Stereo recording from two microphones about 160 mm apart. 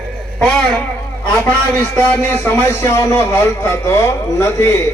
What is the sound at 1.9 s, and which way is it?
Speech, 10° left (ahead or behind).